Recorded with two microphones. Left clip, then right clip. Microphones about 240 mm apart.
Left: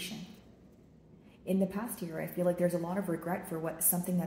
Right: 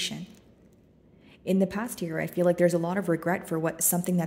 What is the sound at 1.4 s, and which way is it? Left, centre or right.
A woman's voice, right.